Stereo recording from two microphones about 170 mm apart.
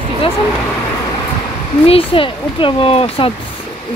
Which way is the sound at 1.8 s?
35° left (ahead or behind).